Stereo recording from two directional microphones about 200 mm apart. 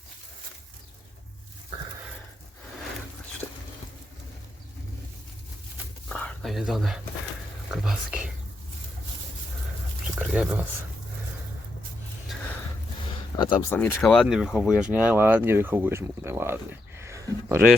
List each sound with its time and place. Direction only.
6.1 s a sound: 5° left (ahead or behind)
7.7 s speech: centre (ahead or behind)
10.2 s speech: 5° right (ahead or behind)
13.3 s speech: 20° left (ahead or behind)
13.7 s speech: 5° left (ahead or behind); by 16.6 s 10° right (ahead or behind)
17.0 s a sound: 15° right (ahead or behind)